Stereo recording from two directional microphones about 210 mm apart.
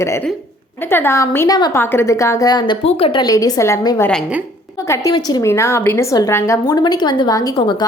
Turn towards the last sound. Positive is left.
turn(degrees=20)  # may be behind; listen again after turning